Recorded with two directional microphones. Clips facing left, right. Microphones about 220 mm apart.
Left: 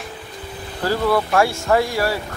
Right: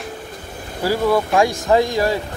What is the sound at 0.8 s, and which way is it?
Speech, 15° right (ahead or behind).